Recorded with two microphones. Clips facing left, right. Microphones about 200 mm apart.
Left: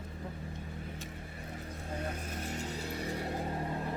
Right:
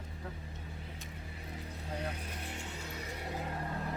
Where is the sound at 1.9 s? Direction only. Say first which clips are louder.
Left 2 dB; 45° left (ahead or behind).